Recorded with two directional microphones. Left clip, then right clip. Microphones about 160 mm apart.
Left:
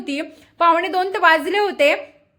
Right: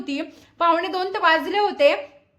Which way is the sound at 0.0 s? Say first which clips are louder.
Left 3 dB; 15° left (ahead or behind).